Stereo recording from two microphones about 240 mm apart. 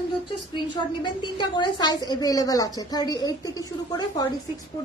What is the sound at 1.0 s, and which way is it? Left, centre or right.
Speech, centre.